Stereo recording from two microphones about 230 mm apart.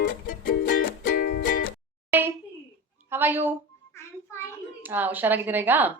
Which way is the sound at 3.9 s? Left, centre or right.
Centre.